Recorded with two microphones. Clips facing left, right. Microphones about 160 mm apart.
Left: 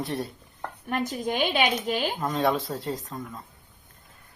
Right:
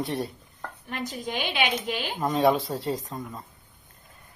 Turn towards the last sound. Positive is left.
turn(degrees=0)  # may be behind; listen again after turning